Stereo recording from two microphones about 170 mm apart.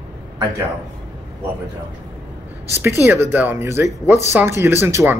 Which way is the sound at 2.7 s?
15° right (ahead or behind).